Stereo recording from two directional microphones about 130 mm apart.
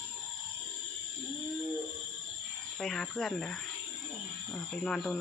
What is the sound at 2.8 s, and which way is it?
Speech, 5° left (ahead or behind).